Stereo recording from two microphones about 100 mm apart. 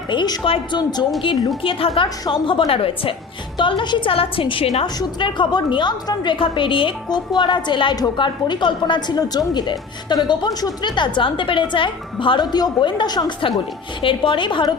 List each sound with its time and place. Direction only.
0.1 s a woman's voice: 50° left (ahead or behind)
0.8 s a woman's voice: 45° left (ahead or behind)
2.2 s a woman's voice: 55° left (ahead or behind)
3.6 s a woman's voice: 55° left (ahead or behind); by 4.9 s 75° left (ahead or behind)
4.9 s a woman's voice: 50° left (ahead or behind)